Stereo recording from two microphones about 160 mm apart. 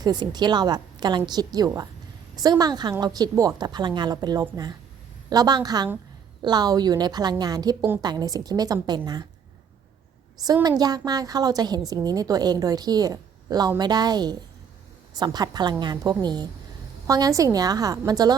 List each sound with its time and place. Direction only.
0.0 s a woman's voice: 25° right (ahead or behind)
10.4 s a woman's voice: 25° right (ahead or behind)